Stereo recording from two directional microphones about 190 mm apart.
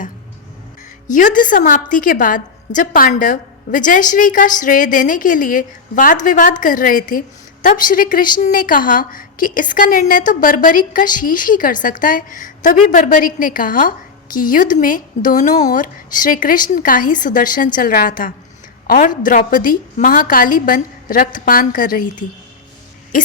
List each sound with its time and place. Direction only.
1.0 s a woman's voice: 45° left (ahead or behind)